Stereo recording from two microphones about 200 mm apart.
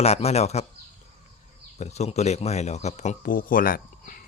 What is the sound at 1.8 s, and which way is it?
Speech, 35° left (ahead or behind).